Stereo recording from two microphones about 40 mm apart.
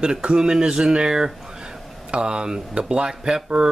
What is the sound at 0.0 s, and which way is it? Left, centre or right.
A man's voice, right.